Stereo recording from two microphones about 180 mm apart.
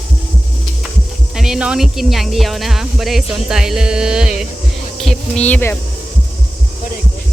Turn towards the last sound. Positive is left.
turn(degrees=10)  # may be behind; listen again after turning